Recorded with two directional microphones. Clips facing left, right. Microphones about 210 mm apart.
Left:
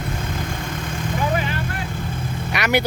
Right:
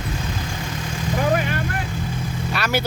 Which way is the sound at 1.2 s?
55° right (ahead or behind).